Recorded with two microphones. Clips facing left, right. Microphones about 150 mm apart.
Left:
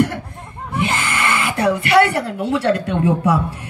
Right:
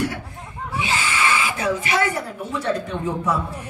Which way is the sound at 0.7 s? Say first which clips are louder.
Left 3 dB; 60° left (ahead or behind).